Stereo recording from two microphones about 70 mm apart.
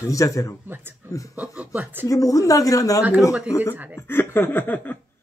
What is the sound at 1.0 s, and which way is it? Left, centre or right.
Speech, right.